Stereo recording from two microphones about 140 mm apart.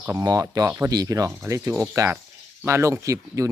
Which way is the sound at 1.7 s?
10° right (ahead or behind).